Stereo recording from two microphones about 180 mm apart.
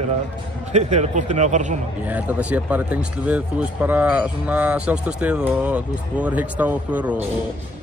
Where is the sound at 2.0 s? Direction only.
10° right (ahead or behind).